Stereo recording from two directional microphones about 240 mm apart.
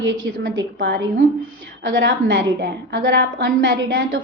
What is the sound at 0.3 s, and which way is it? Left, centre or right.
A woman's voice, right.